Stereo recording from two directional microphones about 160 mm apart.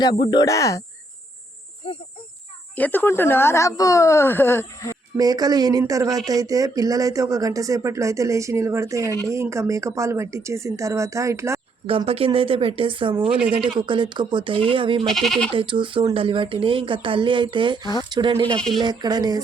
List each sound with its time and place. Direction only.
0.0 s speech: 25° left (ahead or behind)
1.8 s speech: 35° left (ahead or behind)
2.7 s speech: 10° left (ahead or behind)
5.1 s speech: 25° right (ahead or behind)
11.9 s speech: 35° right (ahead or behind)
15.0 s speech: centre (ahead or behind)
15.5 s speech: 30° right (ahead or behind)